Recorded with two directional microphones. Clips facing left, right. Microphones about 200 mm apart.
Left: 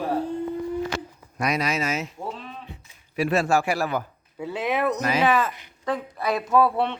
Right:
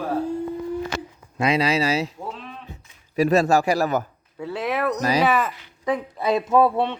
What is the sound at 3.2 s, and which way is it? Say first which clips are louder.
Speech: right 4 dB; 40° right (ahead or behind).